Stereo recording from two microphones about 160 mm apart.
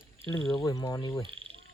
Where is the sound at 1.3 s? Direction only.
35° right (ahead or behind).